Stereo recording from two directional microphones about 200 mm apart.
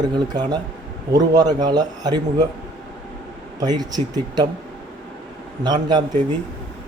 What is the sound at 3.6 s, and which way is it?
Speech, 20° right (ahead or behind).